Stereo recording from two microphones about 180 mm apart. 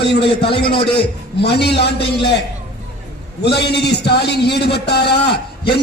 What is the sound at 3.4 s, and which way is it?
A man's voice, 65° left (ahead or behind).